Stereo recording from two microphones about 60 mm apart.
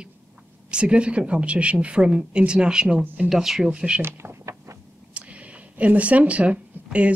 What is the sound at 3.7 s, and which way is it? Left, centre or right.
Speech, centre.